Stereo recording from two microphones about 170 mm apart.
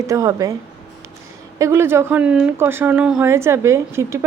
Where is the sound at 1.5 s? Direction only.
15° right (ahead or behind).